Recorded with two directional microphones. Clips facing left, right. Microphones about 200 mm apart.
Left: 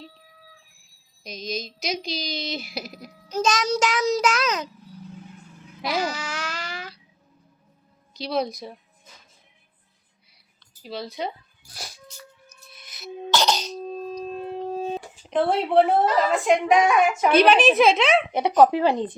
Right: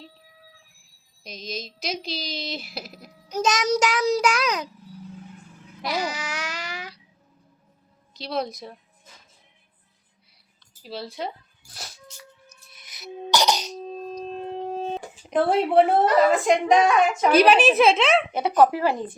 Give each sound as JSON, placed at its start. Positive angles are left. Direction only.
{"t": 1.2, "sound": "a woman's voice", "side_deg": 0}
{"t": 3.2, "sound": "a child's voice", "side_deg": -15}
{"t": 5.9, "sound": "babbling", "side_deg": -15}
{"t": 8.1, "sound": "a woman's voice", "side_deg": 0}
{"t": 10.8, "sound": "a woman's voice", "side_deg": -5}
{"t": 13.3, "sound": "a child's voice", "side_deg": -15}
{"t": 14.2, "sound": "a sound", "side_deg": 5}
{"t": 15.3, "sound": "a woman's voice", "side_deg": -5}
{"t": 17.3, "sound": "a woman's voice", "side_deg": -5}
{"t": 18.3, "sound": "speech", "side_deg": 15}